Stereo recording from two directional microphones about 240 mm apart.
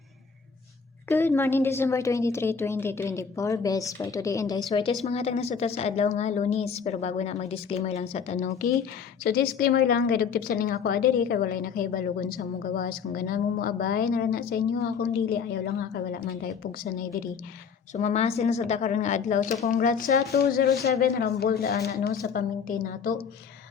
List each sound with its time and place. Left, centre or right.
1.0 s a woman's voice: centre
5.0 s a woman's voice: left
9.2 s a woman's voice: left